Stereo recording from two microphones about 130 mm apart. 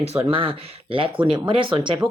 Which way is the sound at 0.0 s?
55° right (ahead or behind).